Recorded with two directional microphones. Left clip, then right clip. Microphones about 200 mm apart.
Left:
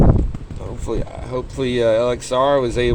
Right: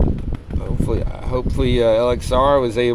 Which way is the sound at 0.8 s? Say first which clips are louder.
Even; 10° right (ahead or behind).